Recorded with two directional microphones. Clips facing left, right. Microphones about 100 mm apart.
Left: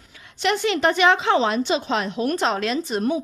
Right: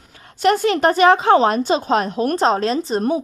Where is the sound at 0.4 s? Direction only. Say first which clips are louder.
Right 5 dB; 45° right (ahead or behind).